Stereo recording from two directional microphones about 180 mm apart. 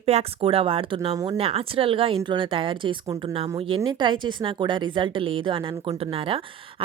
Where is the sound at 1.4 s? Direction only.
30° right (ahead or behind).